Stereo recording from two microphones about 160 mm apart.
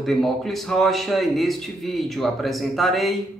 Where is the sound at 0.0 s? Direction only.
Centre (ahead or behind).